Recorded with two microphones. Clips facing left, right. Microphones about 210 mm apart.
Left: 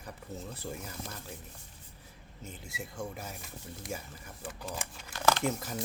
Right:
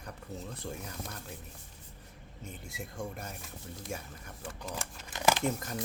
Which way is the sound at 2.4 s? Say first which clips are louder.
Even; centre (ahead or behind).